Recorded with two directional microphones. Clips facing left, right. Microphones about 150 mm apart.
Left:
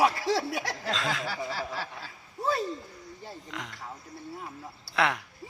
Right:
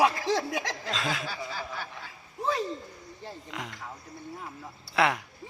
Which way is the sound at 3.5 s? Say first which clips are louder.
Right 1 dB; 5° right (ahead or behind).